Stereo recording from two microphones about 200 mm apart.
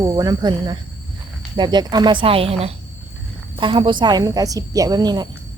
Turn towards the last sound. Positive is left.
turn(degrees=-20)  # may be behind; listen again after turning